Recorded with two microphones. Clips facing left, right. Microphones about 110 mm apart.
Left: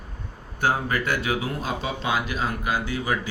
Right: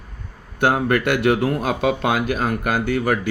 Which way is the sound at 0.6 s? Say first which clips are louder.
Right 6 dB; 70° right (ahead or behind).